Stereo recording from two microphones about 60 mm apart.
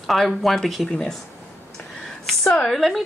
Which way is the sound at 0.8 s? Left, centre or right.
Centre.